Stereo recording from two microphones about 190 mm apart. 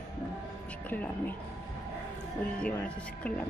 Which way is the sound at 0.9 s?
10° left (ahead or behind).